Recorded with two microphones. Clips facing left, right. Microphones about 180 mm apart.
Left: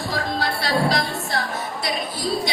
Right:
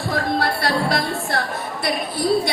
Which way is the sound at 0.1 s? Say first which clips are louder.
Right 5 dB; 55° right (ahead or behind).